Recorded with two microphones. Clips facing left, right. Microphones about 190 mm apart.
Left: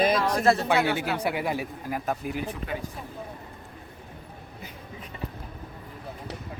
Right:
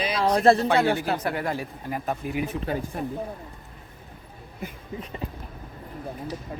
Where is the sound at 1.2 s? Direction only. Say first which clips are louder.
Even; 10° left (ahead or behind).